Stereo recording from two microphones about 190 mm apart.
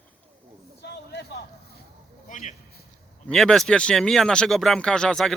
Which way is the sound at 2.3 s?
40° left (ahead or behind).